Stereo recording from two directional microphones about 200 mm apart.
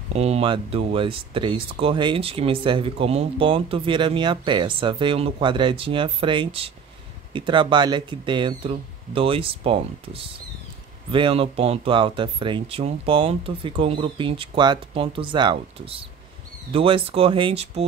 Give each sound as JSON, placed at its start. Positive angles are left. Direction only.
{"t": 0.1, "sound": "speech", "side_deg": -30}